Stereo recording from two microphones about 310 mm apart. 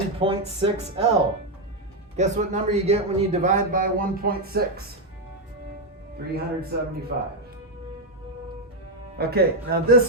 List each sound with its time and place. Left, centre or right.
0.2 s speech: centre
2.1 s a man's voice: right
6.3 s speech: right
9.1 s speech: right